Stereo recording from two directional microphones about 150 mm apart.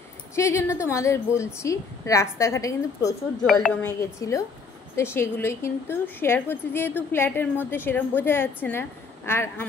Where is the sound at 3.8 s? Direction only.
20° left (ahead or behind).